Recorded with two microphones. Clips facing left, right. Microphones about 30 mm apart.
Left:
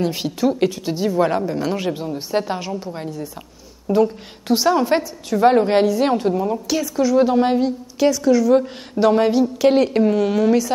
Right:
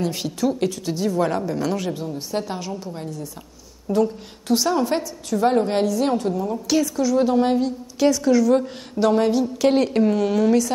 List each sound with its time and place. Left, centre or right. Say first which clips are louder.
0.0 s a woman's voice: left 3 dB; centre
8.0 s a woman's voice: left 1 dB; centre